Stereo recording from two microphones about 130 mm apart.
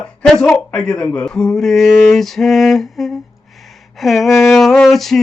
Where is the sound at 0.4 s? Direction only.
5° left (ahead or behind).